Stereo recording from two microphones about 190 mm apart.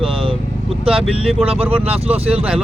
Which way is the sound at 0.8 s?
30° right (ahead or behind).